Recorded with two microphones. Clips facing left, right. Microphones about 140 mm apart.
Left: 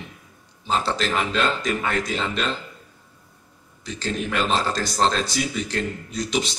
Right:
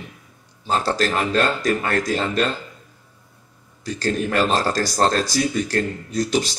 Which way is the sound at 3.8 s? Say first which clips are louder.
Right 5 dB; 45° right (ahead or behind).